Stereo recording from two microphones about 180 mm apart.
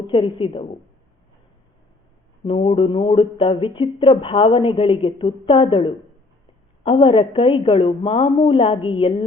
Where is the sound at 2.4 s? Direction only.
30° left (ahead or behind).